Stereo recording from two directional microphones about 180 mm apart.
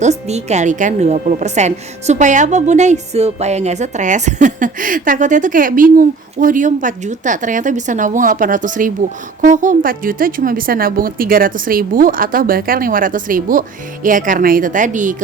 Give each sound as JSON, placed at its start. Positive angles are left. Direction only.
{"t": 0.0, "sound": "a woman's voice", "side_deg": -40}